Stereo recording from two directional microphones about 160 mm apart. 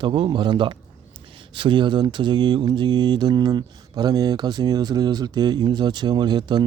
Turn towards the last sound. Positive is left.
turn(degrees=-25)  # may be behind; listen again after turning